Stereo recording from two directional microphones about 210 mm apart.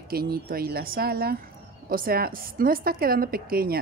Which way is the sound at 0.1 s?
45° right (ahead or behind).